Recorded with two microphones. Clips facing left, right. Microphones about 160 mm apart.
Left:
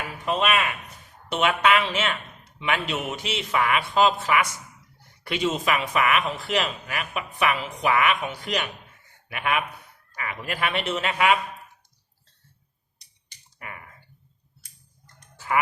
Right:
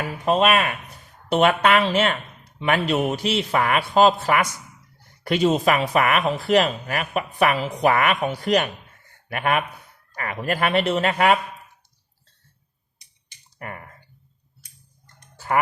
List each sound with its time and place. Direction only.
0.3 s a man's voice: 45° right (ahead or behind)
13.6 s clicking: 45° right (ahead or behind)